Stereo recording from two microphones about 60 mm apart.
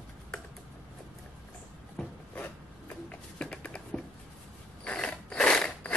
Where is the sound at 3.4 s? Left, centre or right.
Centre.